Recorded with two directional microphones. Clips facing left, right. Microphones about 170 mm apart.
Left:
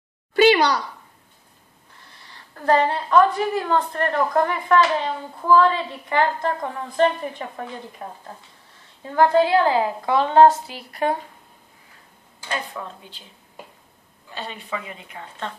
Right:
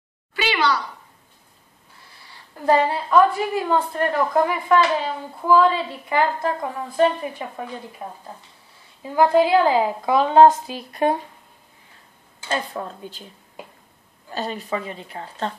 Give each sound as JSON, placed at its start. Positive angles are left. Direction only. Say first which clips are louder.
{"t": 0.4, "sound": "a sound", "louder": "left 7 dB", "side_deg": 45}
{"t": 2.5, "sound": "a woman's voice", "louder": "right 1 dB", "side_deg": -10}
{"t": 12.4, "sound": "speech", "louder": "right 4 dB", "side_deg": -35}
{"t": 14.3, "sound": "speech", "louder": "right 5 dB", "side_deg": -40}